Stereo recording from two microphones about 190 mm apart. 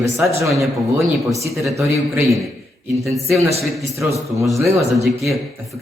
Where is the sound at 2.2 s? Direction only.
Centre (ahead or behind).